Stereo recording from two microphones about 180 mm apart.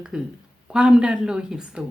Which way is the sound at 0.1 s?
5° right (ahead or behind).